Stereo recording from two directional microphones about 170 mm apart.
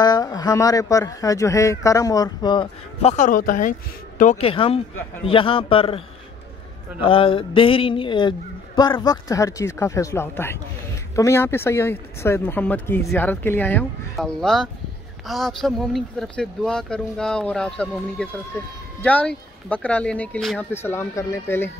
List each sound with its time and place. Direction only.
0.0 s speech: 25° left (ahead or behind)
3.3 s speech: 55° left (ahead or behind)
4.4 s a man's voice: 35° left (ahead or behind); by 21.6 s 15° left (ahead or behind)